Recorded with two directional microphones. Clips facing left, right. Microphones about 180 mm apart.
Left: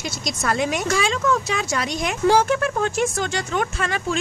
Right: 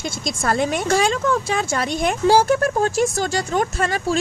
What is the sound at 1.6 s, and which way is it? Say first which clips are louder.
Speech: right 3 dB; 50° right (ahead or behind).